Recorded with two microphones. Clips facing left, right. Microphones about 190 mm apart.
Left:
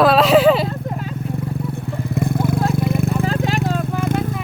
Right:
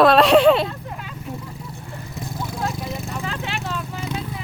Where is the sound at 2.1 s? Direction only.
55° left (ahead or behind).